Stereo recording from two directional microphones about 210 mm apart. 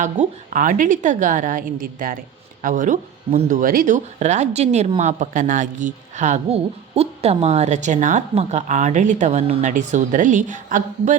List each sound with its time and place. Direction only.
0.0 s a woman's voice: 40° right (ahead or behind)